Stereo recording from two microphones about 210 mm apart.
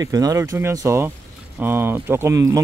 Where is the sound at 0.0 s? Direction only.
15° right (ahead or behind).